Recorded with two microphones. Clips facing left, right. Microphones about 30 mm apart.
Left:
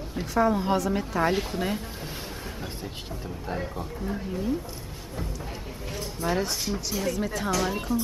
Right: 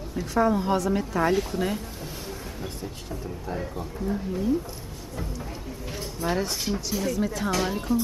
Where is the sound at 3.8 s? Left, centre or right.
Centre.